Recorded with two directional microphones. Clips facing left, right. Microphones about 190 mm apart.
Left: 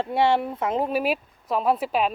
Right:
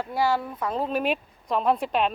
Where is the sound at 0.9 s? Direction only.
5° left (ahead or behind).